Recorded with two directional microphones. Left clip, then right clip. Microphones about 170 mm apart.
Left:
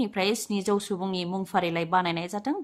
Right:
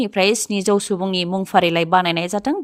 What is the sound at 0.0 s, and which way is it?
Speech, 45° right (ahead or behind).